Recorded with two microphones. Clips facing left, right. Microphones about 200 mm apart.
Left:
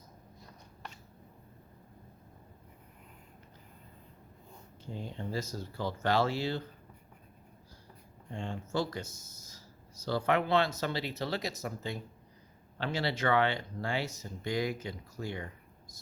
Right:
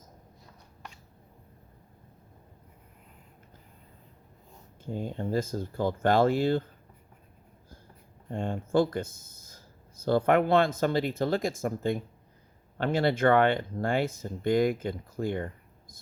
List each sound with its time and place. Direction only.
4.9 s speech: 50° right (ahead or behind)
8.3 s speech: 55° right (ahead or behind)